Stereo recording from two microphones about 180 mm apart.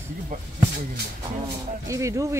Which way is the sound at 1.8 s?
15° right (ahead or behind).